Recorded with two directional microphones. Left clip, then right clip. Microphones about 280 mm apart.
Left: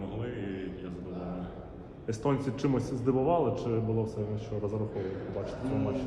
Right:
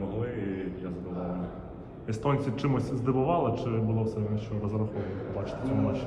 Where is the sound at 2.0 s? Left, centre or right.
Right.